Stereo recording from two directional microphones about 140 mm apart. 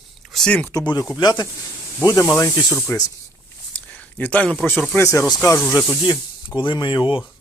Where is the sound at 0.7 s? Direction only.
25° left (ahead or behind).